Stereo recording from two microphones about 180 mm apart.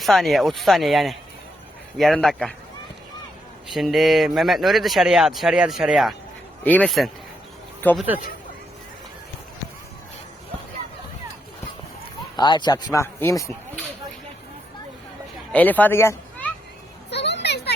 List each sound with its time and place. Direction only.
0.0 s speech: centre (ahead or behind)
3.7 s speech: centre (ahead or behind)
7.9 s speech: 10° right (ahead or behind)
12.4 s speech: 25° left (ahead or behind)
15.5 s a child's voice: 10° left (ahead or behind)
17.1 s a sound: 75° left (ahead or behind)